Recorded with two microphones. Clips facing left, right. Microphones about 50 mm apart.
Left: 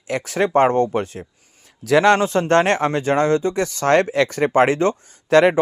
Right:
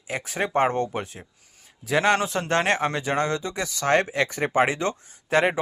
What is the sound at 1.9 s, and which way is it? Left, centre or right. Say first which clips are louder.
Speech: left 7 dB; left.